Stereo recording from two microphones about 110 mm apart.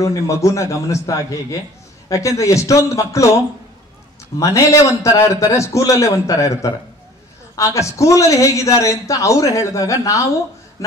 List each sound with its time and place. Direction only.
0.0 s a man's voice: 30° left (ahead or behind)
4.4 s a man's voice: 30° left (ahead or behind)